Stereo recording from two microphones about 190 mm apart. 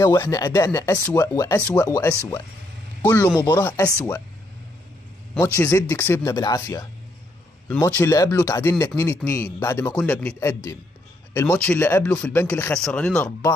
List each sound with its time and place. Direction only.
0.0 s speech: 15° left (ahead or behind)
5.6 s speech: 15° left (ahead or behind)